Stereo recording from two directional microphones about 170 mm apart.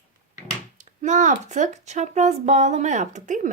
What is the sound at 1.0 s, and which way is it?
A woman's voice, 45° right (ahead or behind).